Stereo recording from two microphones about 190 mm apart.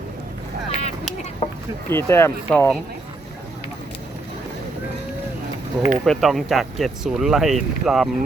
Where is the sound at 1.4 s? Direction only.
35° left (ahead or behind).